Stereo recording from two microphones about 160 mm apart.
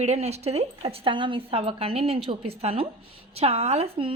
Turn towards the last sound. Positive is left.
turn(degrees=-35)  # may be behind; listen again after turning